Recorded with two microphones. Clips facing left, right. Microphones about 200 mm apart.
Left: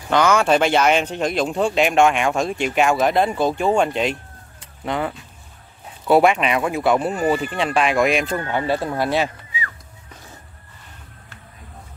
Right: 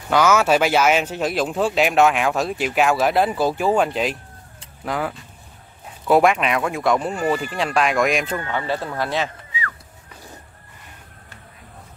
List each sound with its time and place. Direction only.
0.1 s speech: 5° right (ahead or behind)
8.5 s speech: 15° left (ahead or behind)